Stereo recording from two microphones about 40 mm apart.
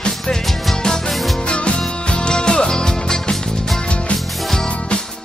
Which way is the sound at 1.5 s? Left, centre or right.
Left.